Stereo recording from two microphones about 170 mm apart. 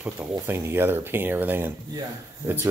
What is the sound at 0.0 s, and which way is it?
Speech, 15° right (ahead or behind).